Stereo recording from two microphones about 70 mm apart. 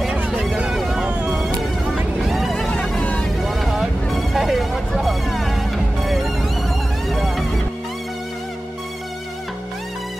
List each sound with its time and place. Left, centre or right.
0.7 s music: centre
1.0 s music: centre
1.9 s music: centre
2.7 s music: centre
3.4 s vehicle: centre
7.1 s music: centre